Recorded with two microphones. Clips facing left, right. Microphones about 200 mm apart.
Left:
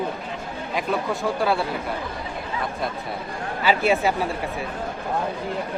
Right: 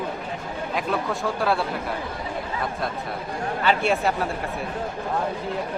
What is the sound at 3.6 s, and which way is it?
Speech, 5° left (ahead or behind).